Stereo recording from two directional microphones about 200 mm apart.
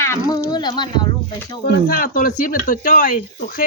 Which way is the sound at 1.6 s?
50° left (ahead or behind).